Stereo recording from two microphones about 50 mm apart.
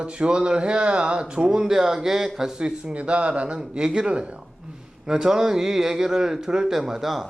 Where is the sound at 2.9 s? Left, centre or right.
Right; by 7.3 s centre.